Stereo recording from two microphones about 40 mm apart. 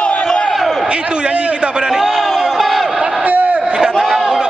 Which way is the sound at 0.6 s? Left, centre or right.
Centre.